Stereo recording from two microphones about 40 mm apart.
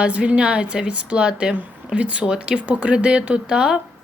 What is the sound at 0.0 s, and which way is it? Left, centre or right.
Speech, right.